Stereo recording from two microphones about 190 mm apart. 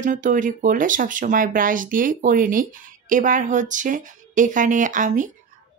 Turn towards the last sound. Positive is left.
turn(degrees=-40)  # may be behind; listen again after turning